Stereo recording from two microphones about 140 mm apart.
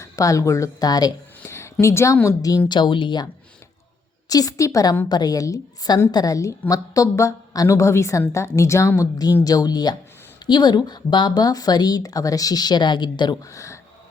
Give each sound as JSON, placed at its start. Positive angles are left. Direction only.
{"t": 0.0, "sound": "a woman's voice", "side_deg": 25}
{"t": 2.6, "sound": "speech", "side_deg": 35}
{"t": 4.3, "sound": "speech", "side_deg": 25}